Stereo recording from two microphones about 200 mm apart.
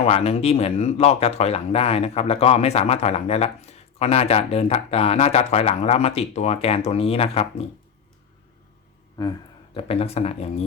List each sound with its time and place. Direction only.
0.0 s speech: 30° left (ahead or behind)
9.2 s a sound: 20° left (ahead or behind)
9.7 s speech: 30° left (ahead or behind)